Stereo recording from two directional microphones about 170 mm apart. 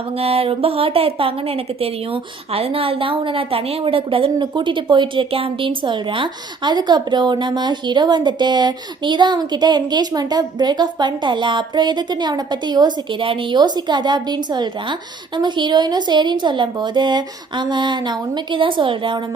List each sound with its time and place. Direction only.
0.2 s a woman's voice: 35° right (ahead or behind)